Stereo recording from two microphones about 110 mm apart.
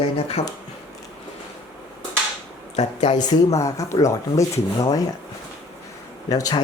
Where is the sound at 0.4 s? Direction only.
90° left.